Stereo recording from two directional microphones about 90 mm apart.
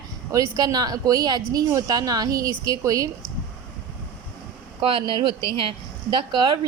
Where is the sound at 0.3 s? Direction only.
40° right (ahead or behind).